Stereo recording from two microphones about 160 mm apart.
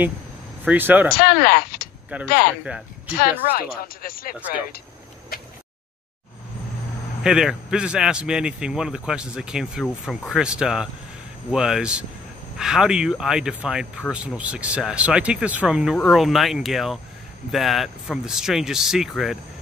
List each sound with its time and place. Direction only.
0.7 s speech: 10° right (ahead or behind)
1.1 s speech: 65° left (ahead or behind)
7.2 s speech: 5° right (ahead or behind)